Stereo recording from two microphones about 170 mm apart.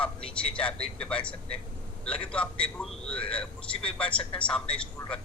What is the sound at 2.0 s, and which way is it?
Speech, 30° left (ahead or behind).